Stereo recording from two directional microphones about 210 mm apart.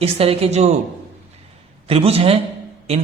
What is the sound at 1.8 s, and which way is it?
Speech, 25° right (ahead or behind).